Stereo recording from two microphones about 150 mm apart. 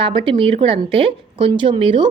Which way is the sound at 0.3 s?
35° right (ahead or behind).